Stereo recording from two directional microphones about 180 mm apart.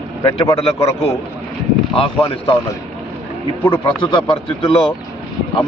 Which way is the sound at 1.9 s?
30° left (ahead or behind).